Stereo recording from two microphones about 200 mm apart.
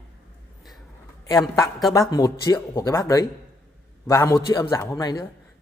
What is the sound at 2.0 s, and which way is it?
A man's voice, 20° left (ahead or behind).